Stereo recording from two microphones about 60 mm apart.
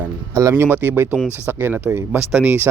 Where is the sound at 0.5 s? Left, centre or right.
Right.